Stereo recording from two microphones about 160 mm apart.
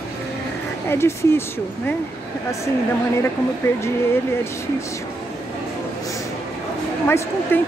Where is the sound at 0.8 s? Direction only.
15° left (ahead or behind).